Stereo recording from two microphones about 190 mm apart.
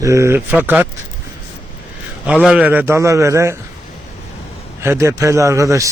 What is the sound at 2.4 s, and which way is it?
A man's voice, 5° right (ahead or behind).